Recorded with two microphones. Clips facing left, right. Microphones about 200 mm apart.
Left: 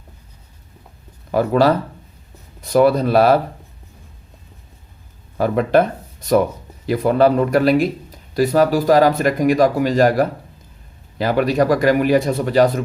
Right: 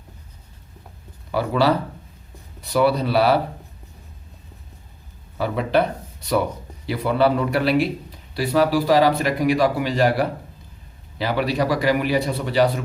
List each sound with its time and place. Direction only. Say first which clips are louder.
1.3 s speech: left 4 dB; 45° left (ahead or behind)
5.4 s speech: left 5 dB; 45° left (ahead or behind)